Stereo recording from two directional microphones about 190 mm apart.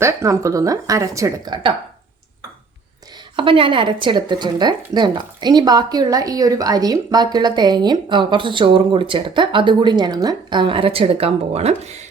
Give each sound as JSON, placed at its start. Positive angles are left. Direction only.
{"t": 0.0, "sound": "speech", "side_deg": -15}
{"t": 3.3, "sound": "speech", "side_deg": -25}